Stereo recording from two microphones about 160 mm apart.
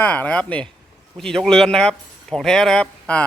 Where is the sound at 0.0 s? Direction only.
10° left (ahead or behind).